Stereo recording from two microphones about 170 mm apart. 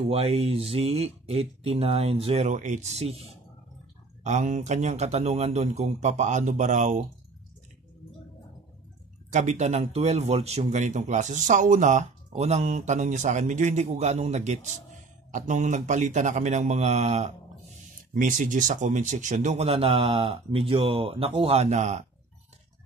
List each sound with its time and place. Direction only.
0.1 s speech: 35° right (ahead or behind)
9.3 s speech: 45° right (ahead or behind)